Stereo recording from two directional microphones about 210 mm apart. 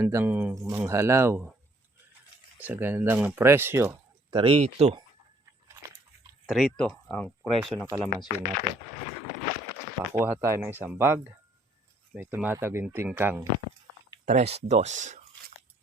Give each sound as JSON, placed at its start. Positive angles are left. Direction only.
{"t": 0.0, "sound": "speech", "side_deg": -10}
{"t": 2.6, "sound": "speech", "side_deg": -10}
{"t": 4.3, "sound": "speech", "side_deg": -25}
{"t": 5.6, "sound": "a sound", "side_deg": -15}
{"t": 6.4, "sound": "speech", "side_deg": 0}
{"t": 10.2, "sound": "speech", "side_deg": -10}
{"t": 14.3, "sound": "speech", "side_deg": -30}